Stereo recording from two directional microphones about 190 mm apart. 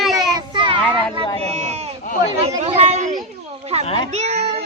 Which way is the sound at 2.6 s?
35° right (ahead or behind).